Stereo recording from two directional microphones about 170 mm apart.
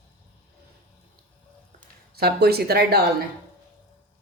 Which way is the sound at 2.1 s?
70° right (ahead or behind).